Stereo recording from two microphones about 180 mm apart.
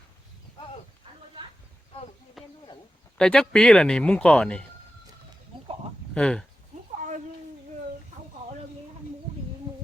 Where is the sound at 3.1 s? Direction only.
5° left (ahead or behind).